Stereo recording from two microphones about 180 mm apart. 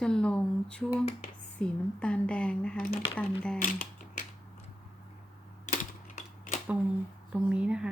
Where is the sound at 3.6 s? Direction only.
45° left (ahead or behind).